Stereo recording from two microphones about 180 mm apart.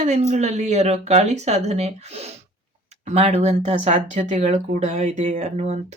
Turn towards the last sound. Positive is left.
turn(degrees=-40)  # may be behind; listen again after turning